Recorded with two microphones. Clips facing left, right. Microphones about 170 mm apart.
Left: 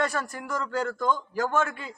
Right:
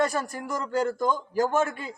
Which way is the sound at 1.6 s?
40° right (ahead or behind).